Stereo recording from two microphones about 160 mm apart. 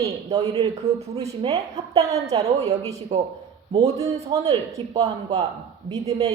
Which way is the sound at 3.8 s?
20° right (ahead or behind).